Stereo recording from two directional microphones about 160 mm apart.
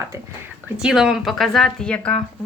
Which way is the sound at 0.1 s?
20° right (ahead or behind).